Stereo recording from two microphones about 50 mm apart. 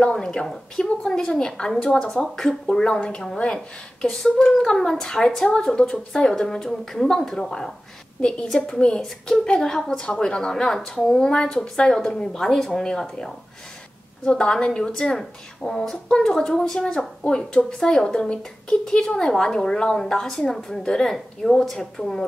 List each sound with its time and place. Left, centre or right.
0.0 s a woman's voice: centre